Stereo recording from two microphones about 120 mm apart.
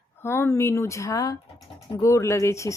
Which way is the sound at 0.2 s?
20° left (ahead or behind).